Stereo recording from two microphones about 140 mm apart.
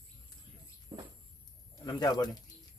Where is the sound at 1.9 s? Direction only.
30° left (ahead or behind).